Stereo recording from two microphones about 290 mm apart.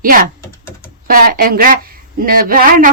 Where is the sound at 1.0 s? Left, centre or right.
Right.